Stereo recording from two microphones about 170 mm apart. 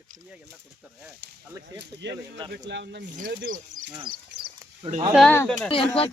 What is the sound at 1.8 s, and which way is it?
Speech, 90° right.